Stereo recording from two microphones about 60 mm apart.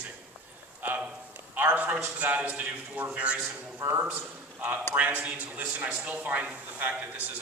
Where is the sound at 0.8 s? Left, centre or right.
Right.